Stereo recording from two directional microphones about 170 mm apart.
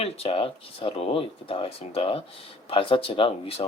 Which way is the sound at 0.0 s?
35° left (ahead or behind).